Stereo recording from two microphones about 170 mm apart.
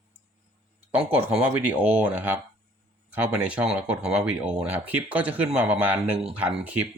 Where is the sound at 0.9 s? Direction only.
10° right (ahead or behind).